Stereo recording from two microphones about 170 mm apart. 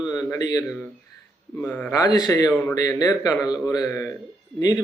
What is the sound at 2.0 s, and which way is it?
Speech, 20° left (ahead or behind).